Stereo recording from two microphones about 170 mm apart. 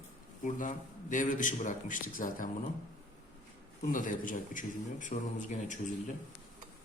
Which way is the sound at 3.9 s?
50° left (ahead or behind).